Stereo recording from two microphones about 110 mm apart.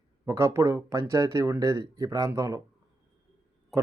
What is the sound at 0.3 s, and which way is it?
A man's voice, 25° right (ahead or behind).